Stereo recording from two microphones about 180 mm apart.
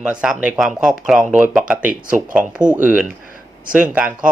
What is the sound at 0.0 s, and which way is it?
Speech, 5° right (ahead or behind).